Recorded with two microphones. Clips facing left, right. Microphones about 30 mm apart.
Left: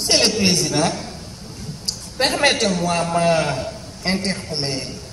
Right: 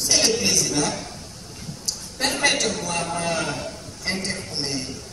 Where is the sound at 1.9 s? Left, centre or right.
Left.